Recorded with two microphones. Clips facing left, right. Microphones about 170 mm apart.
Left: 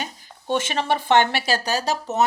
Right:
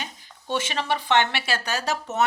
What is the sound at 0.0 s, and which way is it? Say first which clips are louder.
Speech: left 5 dB; 50° left (ahead or behind).